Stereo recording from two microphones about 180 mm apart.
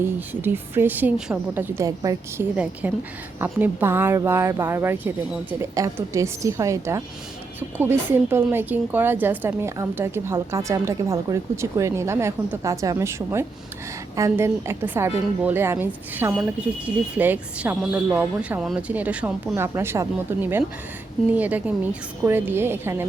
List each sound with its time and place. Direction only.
0.4 s a woman's voice: 10° right (ahead or behind)